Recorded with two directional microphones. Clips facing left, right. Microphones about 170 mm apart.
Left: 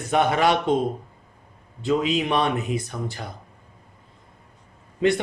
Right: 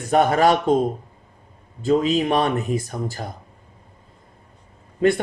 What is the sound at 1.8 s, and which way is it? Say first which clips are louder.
Speech: right 4 dB; 40° right (ahead or behind).